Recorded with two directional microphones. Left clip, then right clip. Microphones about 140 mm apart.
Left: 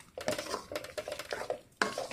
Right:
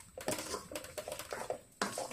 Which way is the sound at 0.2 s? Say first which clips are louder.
Left 4 dB; 10° left (ahead or behind).